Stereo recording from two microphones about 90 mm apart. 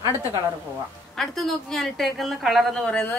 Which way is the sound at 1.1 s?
5° left (ahead or behind).